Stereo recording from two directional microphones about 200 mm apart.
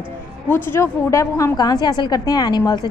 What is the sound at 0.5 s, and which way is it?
A woman's voice, 10° left (ahead or behind).